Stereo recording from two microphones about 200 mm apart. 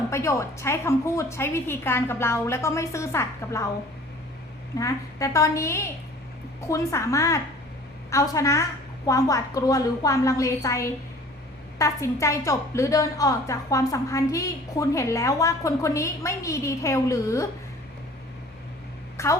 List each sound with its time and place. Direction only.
0.1 s a woman's voice: 15° left (ahead or behind)
4.8 s a woman's voice: 15° left (ahead or behind)
19.1 s a sound: 15° left (ahead or behind)